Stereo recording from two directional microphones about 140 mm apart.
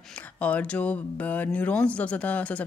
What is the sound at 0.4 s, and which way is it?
Speech, 10° left (ahead or behind).